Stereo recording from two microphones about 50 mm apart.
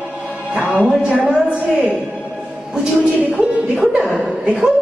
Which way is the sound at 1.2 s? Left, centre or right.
Right.